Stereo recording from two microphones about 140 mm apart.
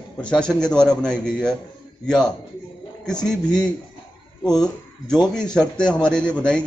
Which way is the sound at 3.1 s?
30° left (ahead or behind).